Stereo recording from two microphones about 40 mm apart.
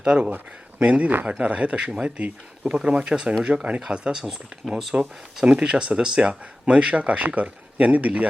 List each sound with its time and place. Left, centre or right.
0.0 s speech: right
4.2 s speech: centre
4.9 s speech: right